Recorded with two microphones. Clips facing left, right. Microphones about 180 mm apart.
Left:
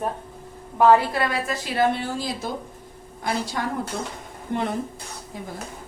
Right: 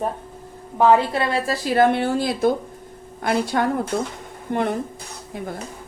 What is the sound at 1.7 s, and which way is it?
Speech, 55° right (ahead or behind).